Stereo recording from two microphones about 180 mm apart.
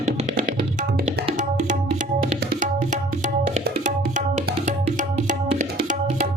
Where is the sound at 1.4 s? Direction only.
45° right (ahead or behind).